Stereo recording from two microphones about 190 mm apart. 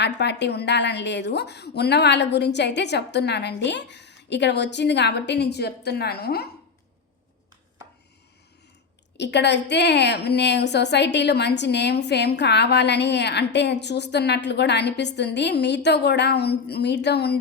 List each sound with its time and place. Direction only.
0.0 s a woman's voice: 65° left (ahead or behind)
9.1 s a woman's voice: 65° left (ahead or behind)